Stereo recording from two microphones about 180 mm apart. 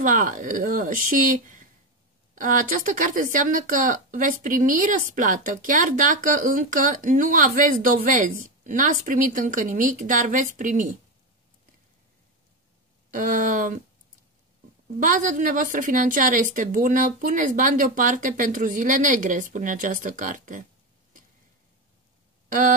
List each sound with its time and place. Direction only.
0.0 s speech: 45° right (ahead or behind)
13.1 s speech: 50° right (ahead or behind)
15.0 s speech: 45° right (ahead or behind)
22.5 s a sound: 45° right (ahead or behind)